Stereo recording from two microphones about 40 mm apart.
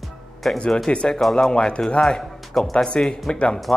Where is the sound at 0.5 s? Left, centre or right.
Left.